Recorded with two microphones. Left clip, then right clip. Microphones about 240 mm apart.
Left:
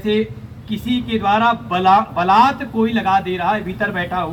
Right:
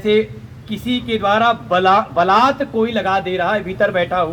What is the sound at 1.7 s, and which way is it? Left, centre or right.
Speech, right.